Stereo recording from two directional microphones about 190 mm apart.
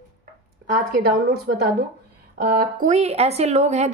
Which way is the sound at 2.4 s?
55° right (ahead or behind).